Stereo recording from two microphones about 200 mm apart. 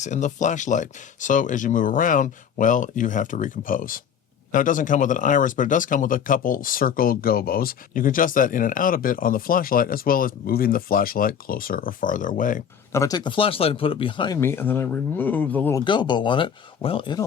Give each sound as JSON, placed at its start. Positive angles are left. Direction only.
{"t": 0.0, "sound": "speech", "side_deg": 35}
{"t": 12.9, "sound": "speech", "side_deg": 15}
{"t": 14.3, "sound": "speech", "side_deg": 10}
{"t": 15.8, "sound": "speech", "side_deg": 25}